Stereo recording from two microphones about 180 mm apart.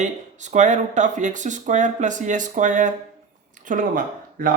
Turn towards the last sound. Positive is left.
turn(degrees=-50)  # may be behind; listen again after turning